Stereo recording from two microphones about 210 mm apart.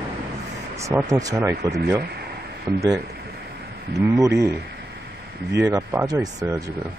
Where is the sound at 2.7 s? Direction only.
15° right (ahead or behind).